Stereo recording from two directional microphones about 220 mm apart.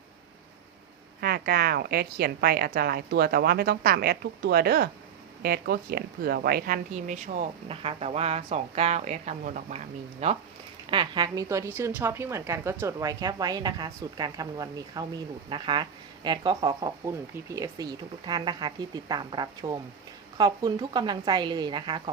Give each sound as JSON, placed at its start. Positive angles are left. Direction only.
{"t": 1.2, "sound": "a woman's voice", "side_deg": -45}